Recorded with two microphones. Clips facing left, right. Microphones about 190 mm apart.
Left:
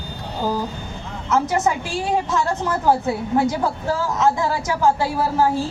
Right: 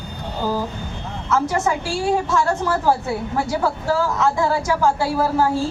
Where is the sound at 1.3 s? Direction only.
20° left (ahead or behind).